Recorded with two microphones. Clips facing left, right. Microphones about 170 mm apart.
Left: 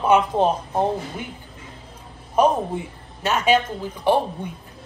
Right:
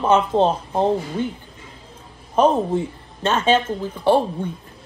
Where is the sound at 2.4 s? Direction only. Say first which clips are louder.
Right 2 dB; 10° left (ahead or behind).